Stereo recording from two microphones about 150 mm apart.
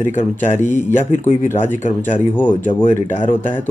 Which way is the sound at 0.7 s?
55° left (ahead or behind).